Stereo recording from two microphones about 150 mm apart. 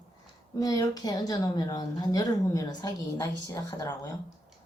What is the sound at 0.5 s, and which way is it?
Speech, 25° left (ahead or behind).